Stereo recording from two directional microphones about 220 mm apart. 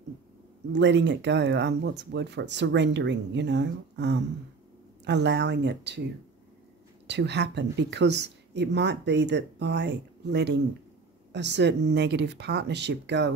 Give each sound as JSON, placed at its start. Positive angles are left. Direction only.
{"t": 0.7, "sound": "a woman's voice", "side_deg": -55}
{"t": 7.1, "sound": "a woman's voice", "side_deg": -50}